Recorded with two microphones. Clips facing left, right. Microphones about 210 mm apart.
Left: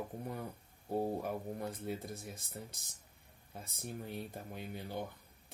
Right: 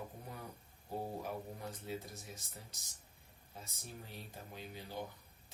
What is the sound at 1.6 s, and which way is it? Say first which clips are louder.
Speech: left 4 dB; 55° left (ahead or behind).